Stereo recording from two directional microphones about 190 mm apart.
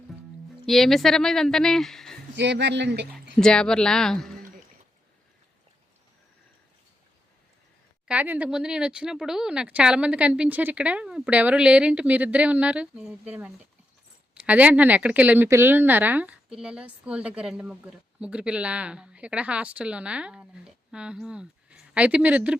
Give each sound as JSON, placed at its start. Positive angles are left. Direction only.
{"t": 0.6, "sound": "speech", "side_deg": 0}
{"t": 2.3, "sound": "speech", "side_deg": -65}
{"t": 3.3, "sound": "speech", "side_deg": 5}
{"t": 8.0, "sound": "speech", "side_deg": -10}